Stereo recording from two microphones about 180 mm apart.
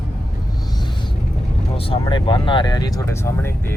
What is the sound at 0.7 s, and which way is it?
Music, 25° left (ahead or behind).